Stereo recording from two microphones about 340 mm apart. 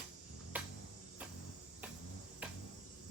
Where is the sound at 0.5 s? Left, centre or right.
Centre.